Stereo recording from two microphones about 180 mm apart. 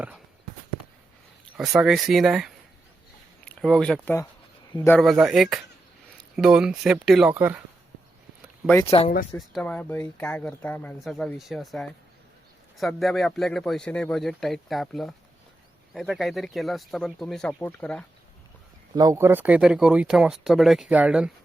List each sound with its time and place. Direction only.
1.5 s speech: 5° right (ahead or behind)
4.9 s speech: centre (ahead or behind)
8.8 s speech: 35° left (ahead or behind)
9.4 s speech: centre (ahead or behind)
18.9 s speech: 15° right (ahead or behind)